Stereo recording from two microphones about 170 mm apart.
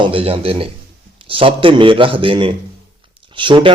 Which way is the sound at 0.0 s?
30° right (ahead or behind).